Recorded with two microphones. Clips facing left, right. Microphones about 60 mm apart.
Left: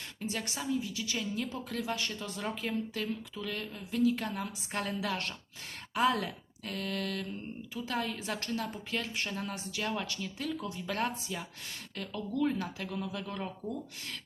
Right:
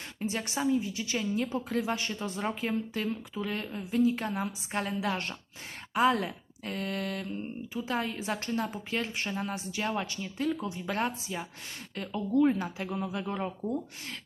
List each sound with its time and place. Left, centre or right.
0.2 s a woman's voice: right